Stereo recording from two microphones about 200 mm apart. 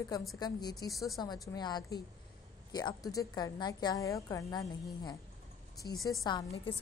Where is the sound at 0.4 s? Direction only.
20° left (ahead or behind).